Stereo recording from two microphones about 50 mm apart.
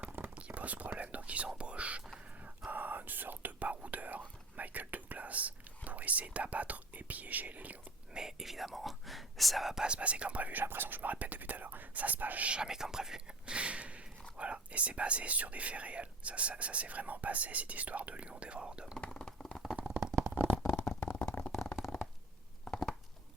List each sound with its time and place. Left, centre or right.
0.3 s whispering: right
1.5 s speech: right
2.6 s speech: right
8.1 s speech: centre
9.8 s speech: right
18.9 s a sound: centre
20.3 s stomach rumble: right
21.2 s stomach rumble: left
21.8 s stomach rumble: centre